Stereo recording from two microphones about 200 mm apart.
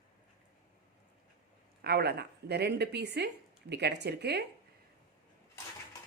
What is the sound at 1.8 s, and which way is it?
A woman's voice, 50° right (ahead or behind).